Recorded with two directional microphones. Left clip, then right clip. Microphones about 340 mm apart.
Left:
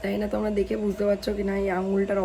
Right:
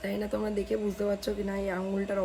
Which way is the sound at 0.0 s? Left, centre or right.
Centre.